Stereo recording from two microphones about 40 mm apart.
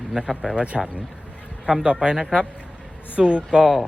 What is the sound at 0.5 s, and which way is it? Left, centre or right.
Speech, right.